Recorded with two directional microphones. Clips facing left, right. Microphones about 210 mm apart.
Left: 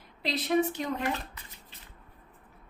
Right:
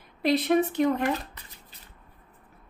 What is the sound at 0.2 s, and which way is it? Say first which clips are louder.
Speech: right 5 dB; 55° right (ahead or behind).